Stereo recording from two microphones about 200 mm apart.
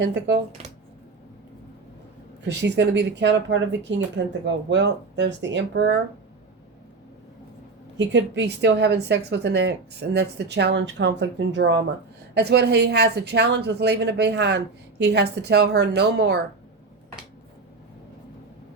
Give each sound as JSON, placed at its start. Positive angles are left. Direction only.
{"t": 0.0, "sound": "a woman's voice", "side_deg": -60}
{"t": 2.5, "sound": "a woman's voice", "side_deg": -60}
{"t": 7.9, "sound": "a woman's voice", "side_deg": -60}